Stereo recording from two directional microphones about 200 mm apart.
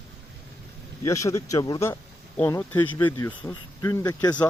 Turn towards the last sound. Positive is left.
turn(degrees=15)  # may be behind; listen again after turning